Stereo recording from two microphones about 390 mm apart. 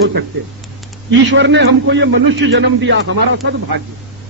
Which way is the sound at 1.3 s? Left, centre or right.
Right.